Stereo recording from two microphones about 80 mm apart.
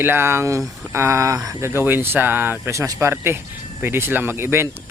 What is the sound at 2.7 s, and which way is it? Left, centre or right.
Speech, right.